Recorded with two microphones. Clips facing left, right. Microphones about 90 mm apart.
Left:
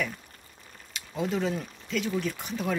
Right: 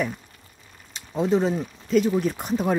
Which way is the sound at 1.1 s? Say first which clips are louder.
Right 7 dB; 30° right (ahead or behind).